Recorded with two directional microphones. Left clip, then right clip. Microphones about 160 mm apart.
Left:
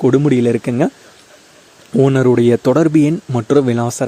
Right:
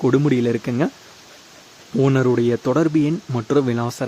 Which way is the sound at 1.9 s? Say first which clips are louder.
Left 6 dB; 35° left (ahead or behind).